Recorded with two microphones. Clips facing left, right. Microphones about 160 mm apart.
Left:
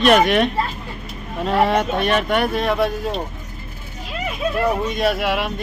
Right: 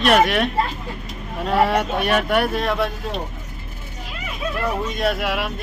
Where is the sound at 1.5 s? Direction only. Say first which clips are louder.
Left 1 dB; 5° right (ahead or behind).